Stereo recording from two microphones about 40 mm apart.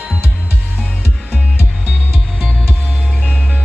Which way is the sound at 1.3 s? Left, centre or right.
Right.